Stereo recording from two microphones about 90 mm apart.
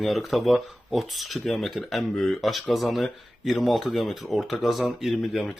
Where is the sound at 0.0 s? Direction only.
Centre (ahead or behind).